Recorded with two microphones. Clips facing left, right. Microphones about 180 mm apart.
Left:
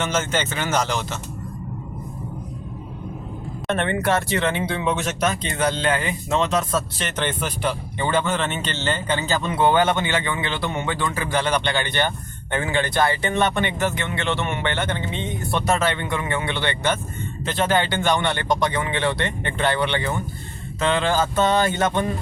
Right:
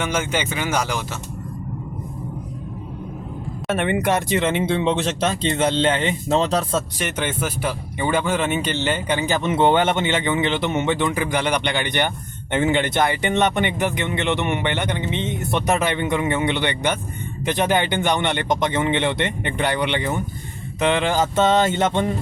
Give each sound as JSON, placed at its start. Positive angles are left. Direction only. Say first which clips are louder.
{"t": 0.0, "sound": "speech", "louder": "even", "side_deg": -10}
{"t": 3.7, "sound": "speech", "louder": "right 1 dB", "side_deg": -15}
{"t": 7.0, "sound": "speech", "louder": "right 1 dB", "side_deg": -10}